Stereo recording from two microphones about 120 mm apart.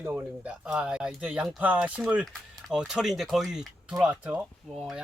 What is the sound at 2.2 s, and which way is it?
Speech, centre (ahead or behind).